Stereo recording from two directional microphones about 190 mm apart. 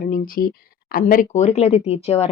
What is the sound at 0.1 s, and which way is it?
Speech, 50° left (ahead or behind).